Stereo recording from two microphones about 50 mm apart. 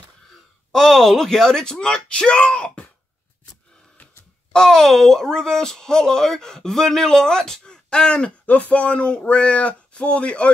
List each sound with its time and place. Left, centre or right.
0.7 s speech: centre
4.5 s speech: centre